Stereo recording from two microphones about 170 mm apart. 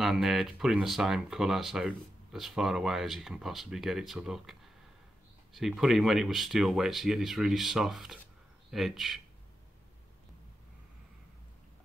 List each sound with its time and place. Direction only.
0.0 s speech: centre (ahead or behind)